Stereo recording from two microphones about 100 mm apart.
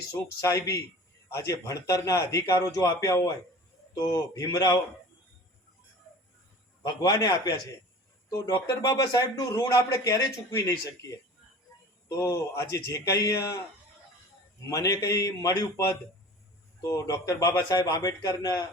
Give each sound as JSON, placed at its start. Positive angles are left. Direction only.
{"t": 0.1, "sound": "speech", "side_deg": 30}
{"t": 6.8, "sound": "speech", "side_deg": 40}
{"t": 14.6, "sound": "speech", "side_deg": 35}
{"t": 16.8, "sound": "speech", "side_deg": 35}